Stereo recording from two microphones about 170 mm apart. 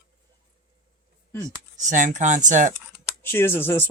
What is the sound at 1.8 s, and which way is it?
Speech, 50° right (ahead or behind).